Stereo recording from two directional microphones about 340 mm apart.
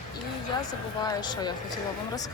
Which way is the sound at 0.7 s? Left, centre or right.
Centre.